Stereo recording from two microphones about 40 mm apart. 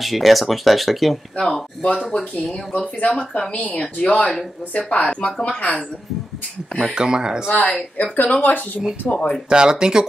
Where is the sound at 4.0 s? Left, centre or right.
Left.